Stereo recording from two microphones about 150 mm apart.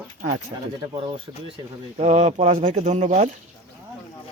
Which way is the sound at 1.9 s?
45° right (ahead or behind).